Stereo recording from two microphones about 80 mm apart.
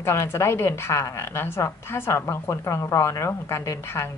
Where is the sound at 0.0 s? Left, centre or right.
Left.